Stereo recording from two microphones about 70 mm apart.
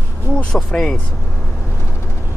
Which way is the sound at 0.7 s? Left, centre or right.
Centre.